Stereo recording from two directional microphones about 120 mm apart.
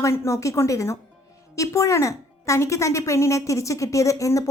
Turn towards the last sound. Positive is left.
turn(degrees=25)  # may be behind; listen again after turning